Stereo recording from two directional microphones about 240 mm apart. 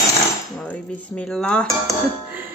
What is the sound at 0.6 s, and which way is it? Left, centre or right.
Speech, centre.